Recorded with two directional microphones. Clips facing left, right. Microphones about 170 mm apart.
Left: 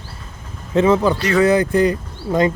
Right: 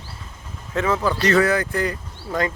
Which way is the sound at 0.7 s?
20° left (ahead or behind).